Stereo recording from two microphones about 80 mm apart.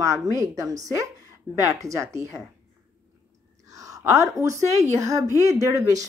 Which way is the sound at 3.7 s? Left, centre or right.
Right.